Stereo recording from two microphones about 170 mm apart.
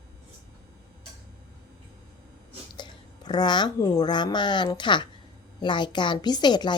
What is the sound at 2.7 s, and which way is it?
A woman's voice, 25° left (ahead or behind).